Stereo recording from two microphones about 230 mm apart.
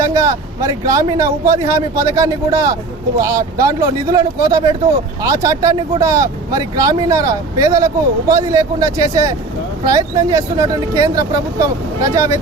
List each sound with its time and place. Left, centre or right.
0.0 s speech: centre